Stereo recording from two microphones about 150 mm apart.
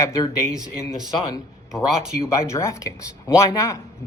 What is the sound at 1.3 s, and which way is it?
Speech, 20° left (ahead or behind).